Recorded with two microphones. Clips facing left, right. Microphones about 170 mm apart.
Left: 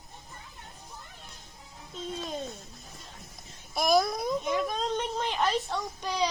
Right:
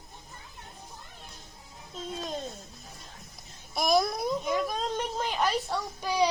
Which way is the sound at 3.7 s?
Centre (ahead or behind).